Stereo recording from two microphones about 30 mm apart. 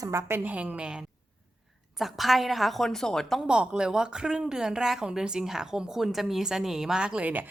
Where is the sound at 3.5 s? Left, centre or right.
Right.